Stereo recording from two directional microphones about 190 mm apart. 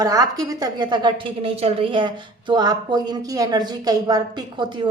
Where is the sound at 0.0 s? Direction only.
20° right (ahead or behind).